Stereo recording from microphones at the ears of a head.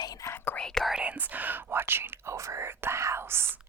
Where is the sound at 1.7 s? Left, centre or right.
Right.